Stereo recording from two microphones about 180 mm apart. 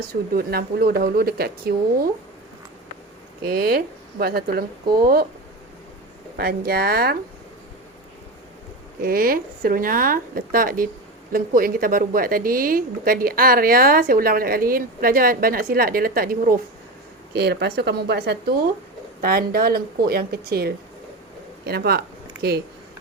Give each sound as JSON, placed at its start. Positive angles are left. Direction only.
{"t": 0.1, "sound": "speech", "side_deg": -55}
{"t": 3.4, "sound": "speech", "side_deg": -55}
{"t": 6.3, "sound": "speech", "side_deg": -60}
{"t": 9.0, "sound": "a woman's voice", "side_deg": -55}
{"t": 17.3, "sound": "speech", "side_deg": -65}